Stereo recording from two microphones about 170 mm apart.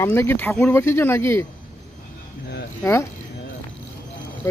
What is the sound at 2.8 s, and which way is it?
Speech, 15° left (ahead or behind).